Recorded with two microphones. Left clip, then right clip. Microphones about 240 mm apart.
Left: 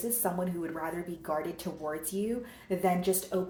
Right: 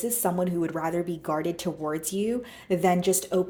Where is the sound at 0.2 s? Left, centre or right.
Right.